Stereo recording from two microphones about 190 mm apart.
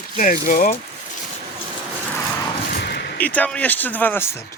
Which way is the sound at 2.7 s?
60° left (ahead or behind).